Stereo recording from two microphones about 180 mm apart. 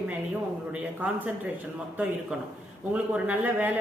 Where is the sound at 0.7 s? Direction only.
10° right (ahead or behind).